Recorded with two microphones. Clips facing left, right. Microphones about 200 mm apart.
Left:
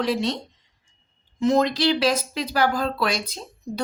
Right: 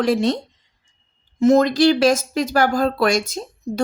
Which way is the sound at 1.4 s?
45° right (ahead or behind).